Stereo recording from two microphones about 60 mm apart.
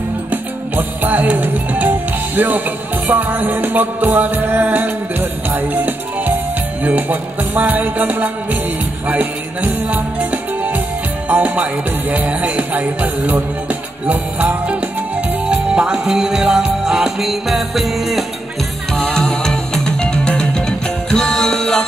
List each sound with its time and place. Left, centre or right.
0.3 s music: right; by 18.2 s centre
19.4 s music: centre